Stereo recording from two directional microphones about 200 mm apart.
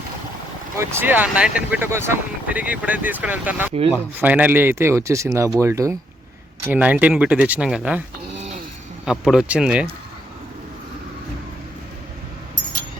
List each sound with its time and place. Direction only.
0.8 s speech: 10° right (ahead or behind)
9.0 s speech: centre (ahead or behind)